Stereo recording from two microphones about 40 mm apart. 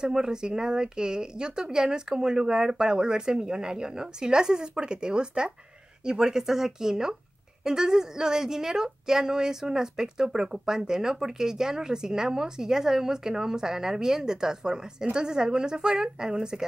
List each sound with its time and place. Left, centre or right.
0.0 s a woman's voice: centre